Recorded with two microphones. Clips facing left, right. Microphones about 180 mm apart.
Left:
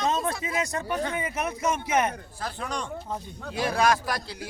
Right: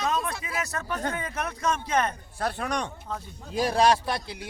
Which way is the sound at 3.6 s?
35° right (ahead or behind).